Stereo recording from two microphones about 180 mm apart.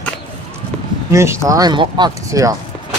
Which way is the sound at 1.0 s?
15° right (ahead or behind).